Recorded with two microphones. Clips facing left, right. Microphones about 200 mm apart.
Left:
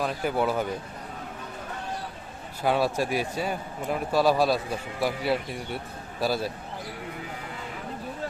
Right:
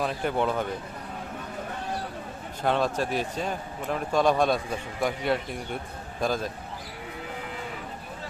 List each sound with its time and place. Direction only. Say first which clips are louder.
0.0 s speech: even; centre (ahead or behind)
2.6 s a man's voice: left 1 dB; 10° left (ahead or behind)